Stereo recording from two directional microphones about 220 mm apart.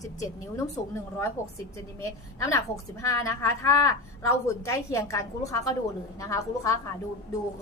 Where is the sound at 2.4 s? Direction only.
15° left (ahead or behind).